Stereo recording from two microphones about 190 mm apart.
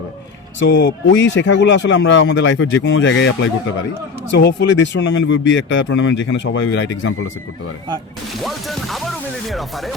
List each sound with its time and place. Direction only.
0.6 s speech: 75° left (ahead or behind)
8.4 s speech: centre (ahead or behind)